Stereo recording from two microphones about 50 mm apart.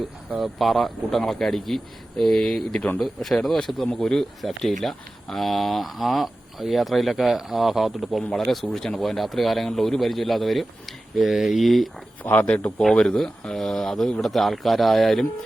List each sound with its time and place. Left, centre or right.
0.3 s speech: centre
8.6 s speech: centre
9.0 s speech: centre
12.2 s speech: left
12.8 s speech: centre